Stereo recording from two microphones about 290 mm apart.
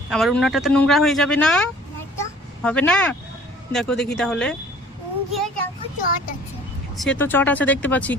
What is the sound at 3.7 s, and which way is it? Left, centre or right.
Speech, centre.